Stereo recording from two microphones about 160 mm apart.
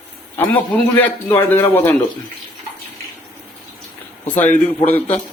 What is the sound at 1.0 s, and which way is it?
Speech, 10° left (ahead or behind).